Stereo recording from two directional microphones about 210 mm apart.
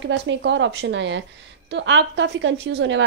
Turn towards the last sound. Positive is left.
turn(degrees=-60)  # may be behind; listen again after turning